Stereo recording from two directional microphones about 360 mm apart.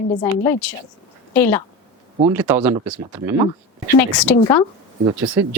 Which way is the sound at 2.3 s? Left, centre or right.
Centre.